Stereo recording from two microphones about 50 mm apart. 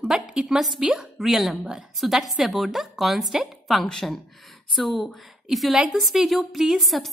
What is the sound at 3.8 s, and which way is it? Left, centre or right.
A woman's voice, centre.